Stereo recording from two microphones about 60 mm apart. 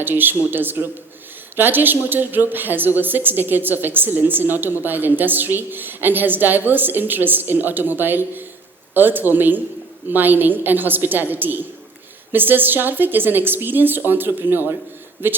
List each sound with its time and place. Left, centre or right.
0.0 s a woman's voice: right